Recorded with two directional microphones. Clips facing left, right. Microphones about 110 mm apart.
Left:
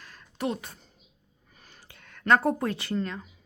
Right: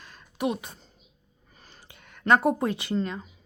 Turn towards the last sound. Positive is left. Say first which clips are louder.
# right 2 dB
turn(degrees=-20)  # may be behind; listen again after turning